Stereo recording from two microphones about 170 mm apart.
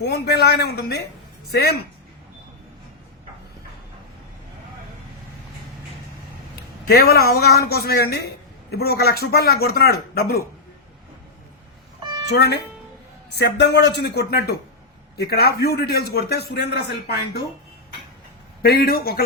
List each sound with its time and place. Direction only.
0.0 s a man's voice: 80° left
6.8 s a man's voice: 65° left (ahead or behind)
12.3 s a man's voice: 80° left
18.6 s a man's voice: 65° left (ahead or behind)